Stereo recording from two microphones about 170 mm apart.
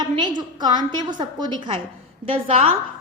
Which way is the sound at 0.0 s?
25° right (ahead or behind).